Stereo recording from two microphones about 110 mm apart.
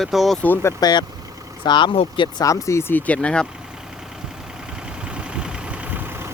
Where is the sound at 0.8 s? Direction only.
40° left (ahead or behind).